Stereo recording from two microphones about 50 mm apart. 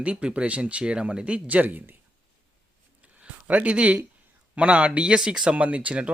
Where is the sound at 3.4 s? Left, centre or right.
Right; by 5.5 s centre.